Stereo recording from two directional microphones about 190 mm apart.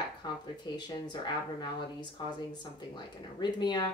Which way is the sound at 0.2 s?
20° left (ahead or behind).